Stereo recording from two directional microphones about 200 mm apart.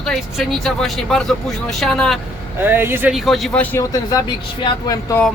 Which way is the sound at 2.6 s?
10° right (ahead or behind).